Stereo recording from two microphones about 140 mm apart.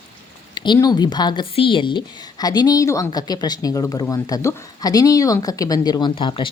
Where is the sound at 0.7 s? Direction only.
30° left (ahead or behind).